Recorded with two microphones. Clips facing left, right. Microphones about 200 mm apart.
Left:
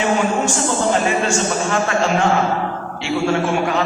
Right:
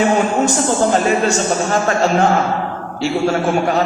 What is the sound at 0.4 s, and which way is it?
A man's voice, 40° right (ahead or behind).